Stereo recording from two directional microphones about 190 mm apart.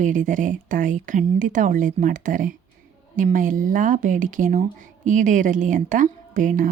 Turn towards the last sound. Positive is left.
turn(degrees=-45)  # may be behind; listen again after turning